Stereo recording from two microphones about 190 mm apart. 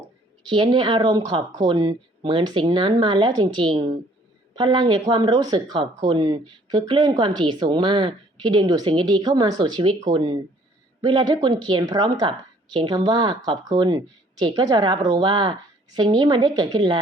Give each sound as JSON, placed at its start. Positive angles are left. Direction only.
{"t": 0.4, "sound": "speech", "side_deg": -25}